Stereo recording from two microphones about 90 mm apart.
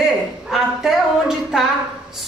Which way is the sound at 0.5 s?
5° right (ahead or behind).